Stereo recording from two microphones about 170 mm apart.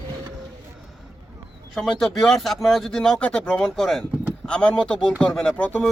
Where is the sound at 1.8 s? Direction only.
Centre (ahead or behind).